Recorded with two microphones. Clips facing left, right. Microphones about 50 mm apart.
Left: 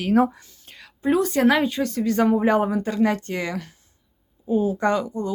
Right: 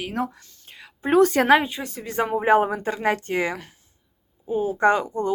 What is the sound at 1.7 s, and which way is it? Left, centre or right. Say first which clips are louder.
Speech: left 7 dB; centre.